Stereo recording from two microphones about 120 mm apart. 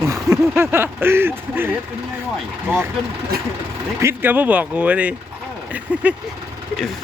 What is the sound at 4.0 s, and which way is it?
Speech, 20° right (ahead or behind).